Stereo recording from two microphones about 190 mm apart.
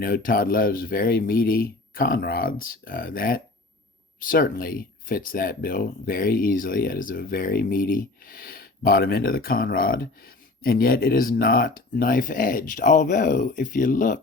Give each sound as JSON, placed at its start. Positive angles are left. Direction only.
{"t": 0.0, "sound": "speech", "side_deg": 50}